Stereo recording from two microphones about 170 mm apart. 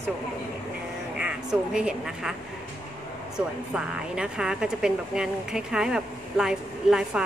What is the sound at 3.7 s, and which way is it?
Speech, 5° right (ahead or behind).